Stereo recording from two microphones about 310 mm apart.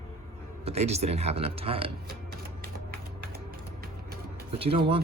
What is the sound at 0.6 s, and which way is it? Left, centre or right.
A man's voice, centre.